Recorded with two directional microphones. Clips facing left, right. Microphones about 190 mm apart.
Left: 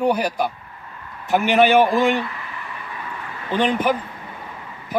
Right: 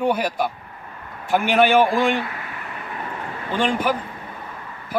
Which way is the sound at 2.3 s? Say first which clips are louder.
Right 1 dB; 45° right (ahead or behind).